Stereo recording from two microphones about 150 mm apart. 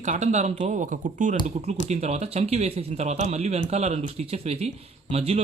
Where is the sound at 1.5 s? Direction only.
45° right (ahead or behind).